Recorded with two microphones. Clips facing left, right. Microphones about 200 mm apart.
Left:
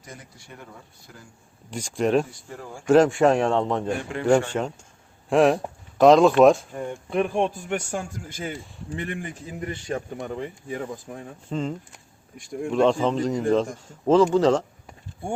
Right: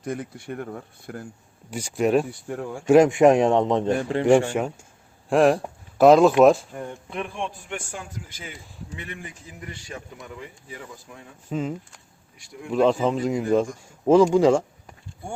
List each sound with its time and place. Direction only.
0.0 s speech: 60° right (ahead or behind)
1.7 s a man's voice: 5° right (ahead or behind)
5.3 s speech: centre (ahead or behind)
7.1 s a man's voice: 40° left (ahead or behind)
11.4 s a man's voice: 5° right (ahead or behind)